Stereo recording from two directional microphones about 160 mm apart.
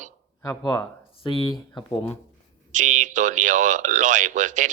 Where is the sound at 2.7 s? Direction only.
50° right (ahead or behind).